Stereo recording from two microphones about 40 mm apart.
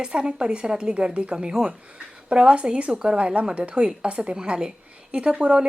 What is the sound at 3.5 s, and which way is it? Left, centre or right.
A woman's voice, right.